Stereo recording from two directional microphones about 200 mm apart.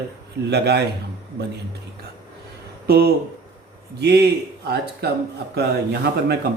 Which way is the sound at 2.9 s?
50° right (ahead or behind).